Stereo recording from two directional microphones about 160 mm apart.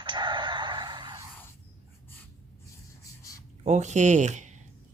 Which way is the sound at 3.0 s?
20° left (ahead or behind).